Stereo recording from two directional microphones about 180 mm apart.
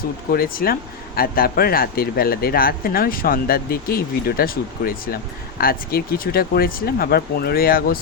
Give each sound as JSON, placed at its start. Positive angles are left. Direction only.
{"t": 0.3, "sound": "speech", "side_deg": 55}